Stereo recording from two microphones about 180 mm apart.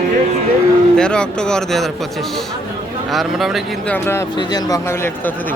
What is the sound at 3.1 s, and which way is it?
Speech, centre (ahead or behind).